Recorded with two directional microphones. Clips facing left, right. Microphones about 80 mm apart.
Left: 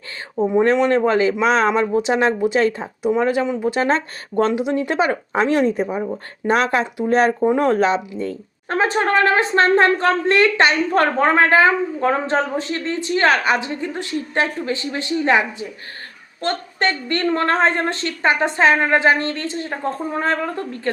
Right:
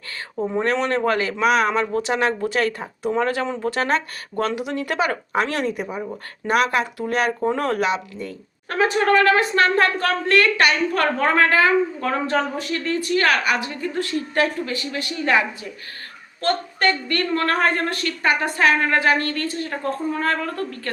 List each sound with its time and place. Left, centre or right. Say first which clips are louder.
0.5 s a woman's voice: left 6 dB; left
7.4 s a woman's voice: left 5 dB; centre